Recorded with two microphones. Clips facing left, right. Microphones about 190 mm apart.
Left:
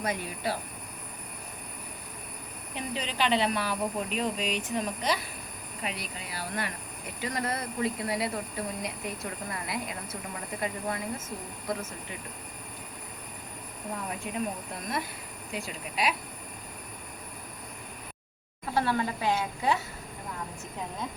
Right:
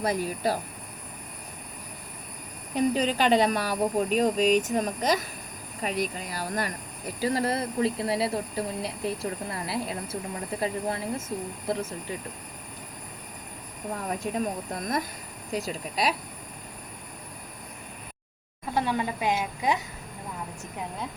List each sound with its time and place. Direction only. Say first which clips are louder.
0.0 s speech: right 5 dB; 35° right (ahead or behind)
2.7 s speech: right 9 dB; 40° right (ahead or behind)
14.3 s speech: right 6 dB; 40° right (ahead or behind)
15.5 s speech: right 5 dB; 40° right (ahead or behind)
18.7 s speech: right 1 dB; 15° right (ahead or behind)